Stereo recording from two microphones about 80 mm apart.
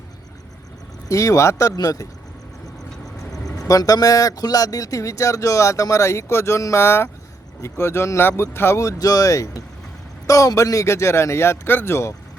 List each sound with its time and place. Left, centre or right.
1.0 s speech: left
3.3 s vehicle: centre
3.7 s speech: left